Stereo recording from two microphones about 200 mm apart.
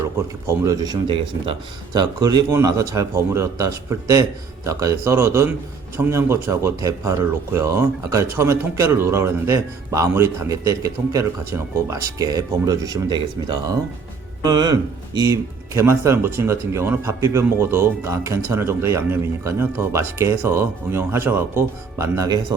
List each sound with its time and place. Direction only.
0.2 s speech: 15° right (ahead or behind)